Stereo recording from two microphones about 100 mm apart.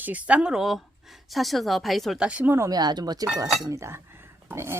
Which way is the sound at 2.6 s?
40° right (ahead or behind).